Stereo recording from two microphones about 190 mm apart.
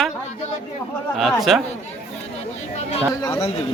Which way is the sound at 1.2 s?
Centre (ahead or behind).